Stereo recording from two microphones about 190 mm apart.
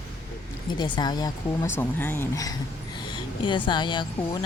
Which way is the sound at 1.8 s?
10° left (ahead or behind).